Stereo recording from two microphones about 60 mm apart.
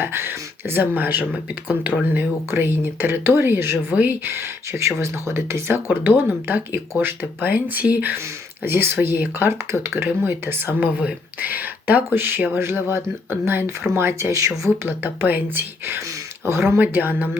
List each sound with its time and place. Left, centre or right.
0.0 s speech: right
14.8 s speech: right
16.5 s speech: right